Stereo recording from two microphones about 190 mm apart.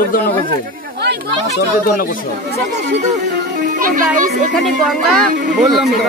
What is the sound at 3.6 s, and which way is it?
A child's voice, 45° right (ahead or behind).